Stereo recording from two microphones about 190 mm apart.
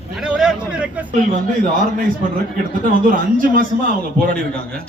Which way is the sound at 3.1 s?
45° right (ahead or behind).